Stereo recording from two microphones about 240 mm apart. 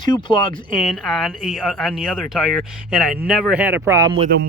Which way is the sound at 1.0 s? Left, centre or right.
Centre.